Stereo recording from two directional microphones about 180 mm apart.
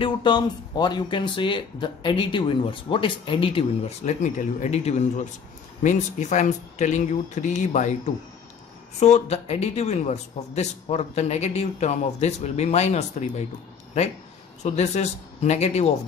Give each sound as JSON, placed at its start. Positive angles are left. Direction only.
{"t": 0.0, "sound": "a man's voice", "side_deg": 25}
{"t": 14.6, "sound": "a man's voice", "side_deg": 40}